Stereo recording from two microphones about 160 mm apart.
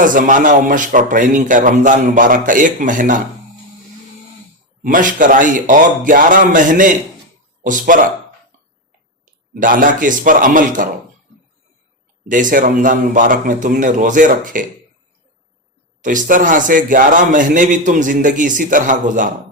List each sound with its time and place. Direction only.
0.0 s a man's voice: 55° right (ahead or behind)
4.8 s a man's voice: 55° right (ahead or behind)
9.6 s a man's voice: 60° right (ahead or behind)
12.3 s a man's voice: 55° right (ahead or behind)
16.0 s a man's voice: 55° right (ahead or behind)